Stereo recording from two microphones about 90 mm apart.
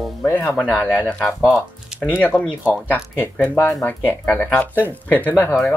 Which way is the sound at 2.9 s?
20° left (ahead or behind).